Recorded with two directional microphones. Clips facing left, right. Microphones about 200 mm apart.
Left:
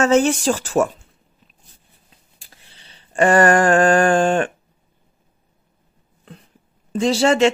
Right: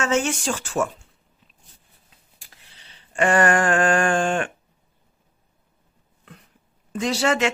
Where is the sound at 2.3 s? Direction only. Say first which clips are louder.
Left 2 dB; 30° left (ahead or behind).